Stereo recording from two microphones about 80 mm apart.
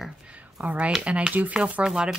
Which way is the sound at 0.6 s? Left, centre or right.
Centre.